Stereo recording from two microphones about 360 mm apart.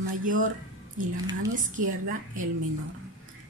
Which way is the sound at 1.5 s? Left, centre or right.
Right.